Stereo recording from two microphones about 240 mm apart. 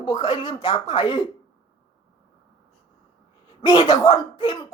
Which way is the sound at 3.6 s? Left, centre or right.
Centre.